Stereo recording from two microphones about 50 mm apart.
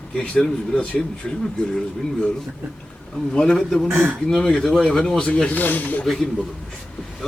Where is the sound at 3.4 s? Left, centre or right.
Centre.